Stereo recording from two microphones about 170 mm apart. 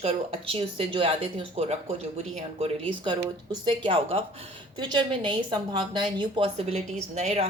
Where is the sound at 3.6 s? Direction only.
30° right (ahead or behind).